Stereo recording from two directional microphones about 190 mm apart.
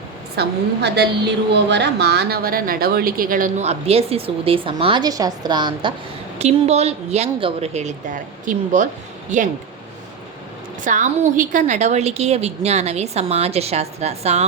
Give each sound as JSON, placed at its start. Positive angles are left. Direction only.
{"t": 0.3, "sound": "a woman's voice", "side_deg": -65}
{"t": 10.8, "sound": "a woman's voice", "side_deg": -40}